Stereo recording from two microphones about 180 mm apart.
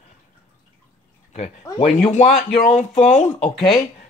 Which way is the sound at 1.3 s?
40° left (ahead or behind).